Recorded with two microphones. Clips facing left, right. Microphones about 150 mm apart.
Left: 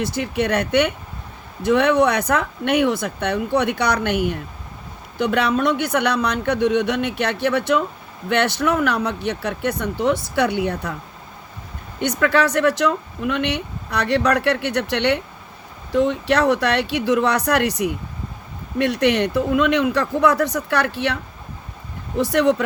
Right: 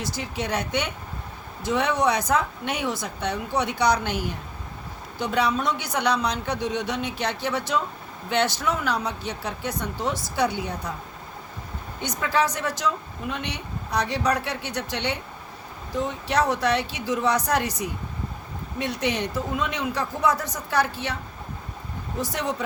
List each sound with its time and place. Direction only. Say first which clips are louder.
0.0 s speech: left 8 dB; 60° left (ahead or behind)
11.9 s speech: left 6 dB; 65° left (ahead or behind)
22.2 s speech: left 11 dB; 65° left (ahead or behind)